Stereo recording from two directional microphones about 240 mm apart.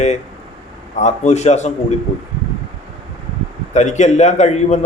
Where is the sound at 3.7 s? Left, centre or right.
Left.